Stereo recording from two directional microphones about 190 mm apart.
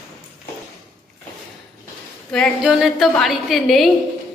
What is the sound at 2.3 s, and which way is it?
A woman's voice, centre (ahead or behind).